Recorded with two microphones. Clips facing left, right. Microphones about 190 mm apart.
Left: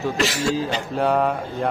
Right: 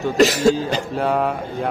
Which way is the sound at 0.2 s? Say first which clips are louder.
Right 11 dB; 40° right (ahead or behind).